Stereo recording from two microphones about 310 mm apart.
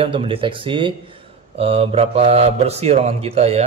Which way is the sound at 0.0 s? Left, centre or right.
Centre.